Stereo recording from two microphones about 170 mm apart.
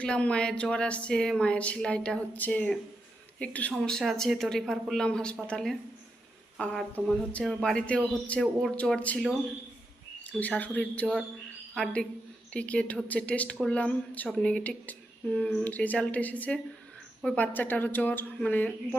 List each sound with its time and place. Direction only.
0.0 s speech: 5° left (ahead or behind)
10.2 s a woman's voice: 10° left (ahead or behind)